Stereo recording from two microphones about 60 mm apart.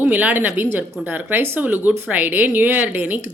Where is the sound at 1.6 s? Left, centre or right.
Right.